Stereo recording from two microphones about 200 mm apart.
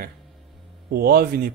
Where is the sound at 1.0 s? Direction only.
50° right (ahead or behind).